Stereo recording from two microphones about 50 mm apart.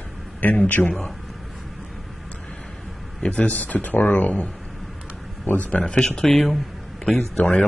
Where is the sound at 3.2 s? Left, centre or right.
Left.